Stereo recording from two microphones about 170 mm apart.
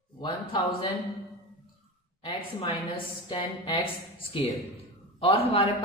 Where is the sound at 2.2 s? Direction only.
30° left (ahead or behind).